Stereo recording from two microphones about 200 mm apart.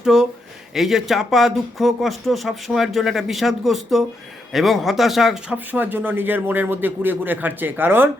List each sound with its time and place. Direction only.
0.0 s speech: centre (ahead or behind)